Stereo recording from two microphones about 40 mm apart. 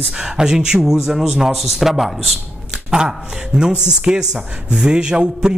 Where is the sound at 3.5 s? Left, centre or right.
Right.